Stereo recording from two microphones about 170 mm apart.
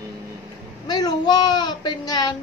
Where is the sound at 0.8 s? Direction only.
25° left (ahead or behind).